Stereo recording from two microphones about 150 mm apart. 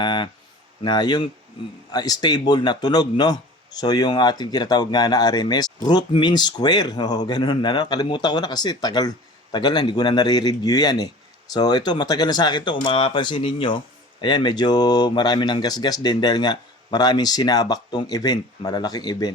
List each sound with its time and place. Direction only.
0.0 s a man's voice: 30° left (ahead or behind)